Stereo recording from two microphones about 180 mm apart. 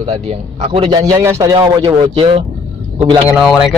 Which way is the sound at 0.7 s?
25° right (ahead or behind).